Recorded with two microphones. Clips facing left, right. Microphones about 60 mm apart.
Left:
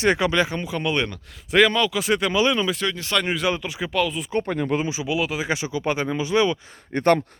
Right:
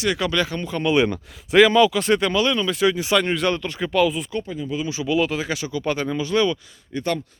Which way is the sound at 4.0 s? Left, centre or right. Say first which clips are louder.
Right 4 dB; centre.